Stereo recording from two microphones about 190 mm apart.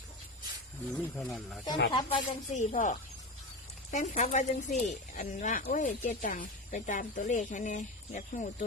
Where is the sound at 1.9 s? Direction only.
25° left (ahead or behind).